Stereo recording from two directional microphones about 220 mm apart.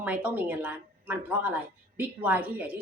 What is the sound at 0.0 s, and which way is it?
A woman's voice, 5° right (ahead or behind).